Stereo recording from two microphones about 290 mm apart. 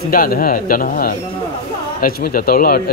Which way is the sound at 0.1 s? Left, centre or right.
Left.